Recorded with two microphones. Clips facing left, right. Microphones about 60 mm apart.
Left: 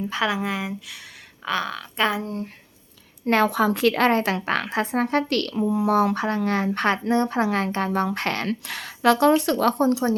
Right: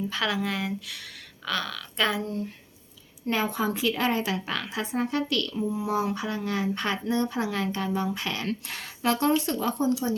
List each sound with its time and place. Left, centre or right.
0.1 s speech: left
1.5 s speech: left
3.2 s a woman's voice: left
5.5 s a woman's voice: left
8.6 s speech: left